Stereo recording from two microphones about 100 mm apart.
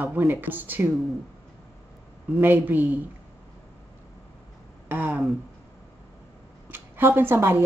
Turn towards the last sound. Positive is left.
turn(degrees=-20)  # may be behind; listen again after turning